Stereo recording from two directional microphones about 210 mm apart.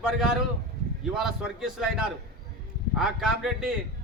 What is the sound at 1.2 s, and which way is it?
Speech, centre (ahead or behind).